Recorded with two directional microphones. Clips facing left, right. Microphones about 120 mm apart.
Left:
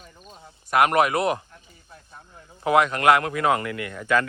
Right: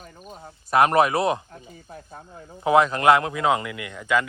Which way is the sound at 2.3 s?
25° right (ahead or behind).